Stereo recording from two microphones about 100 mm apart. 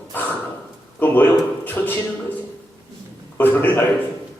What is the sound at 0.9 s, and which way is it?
Speech, 20° left (ahead or behind).